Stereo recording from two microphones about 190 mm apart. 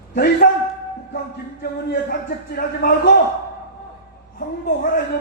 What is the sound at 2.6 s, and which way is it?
Speech, 50° left (ahead or behind).